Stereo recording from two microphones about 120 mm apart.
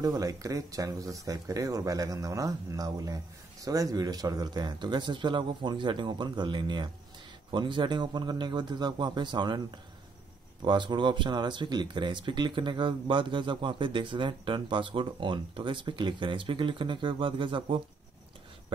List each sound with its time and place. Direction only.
0.0 s speech: 30° right (ahead or behind)
10.6 s speech: 40° right (ahead or behind)